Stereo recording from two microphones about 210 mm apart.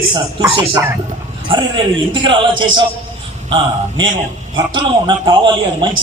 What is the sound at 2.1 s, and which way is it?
Speech, 20° right (ahead or behind).